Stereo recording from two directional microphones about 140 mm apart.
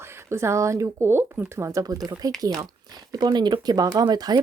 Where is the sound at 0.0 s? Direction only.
20° right (ahead or behind).